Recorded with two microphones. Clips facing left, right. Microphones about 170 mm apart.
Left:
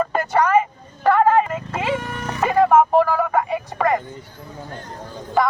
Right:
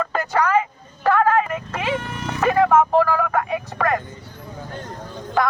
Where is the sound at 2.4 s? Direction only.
15° left (ahead or behind).